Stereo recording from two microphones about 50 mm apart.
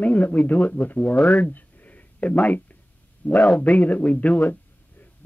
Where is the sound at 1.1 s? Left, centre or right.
Left.